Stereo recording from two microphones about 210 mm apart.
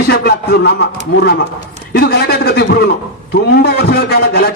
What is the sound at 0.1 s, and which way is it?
Music, 50° left (ahead or behind).